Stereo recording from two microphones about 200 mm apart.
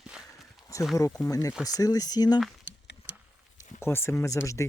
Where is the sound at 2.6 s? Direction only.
65° left (ahead or behind).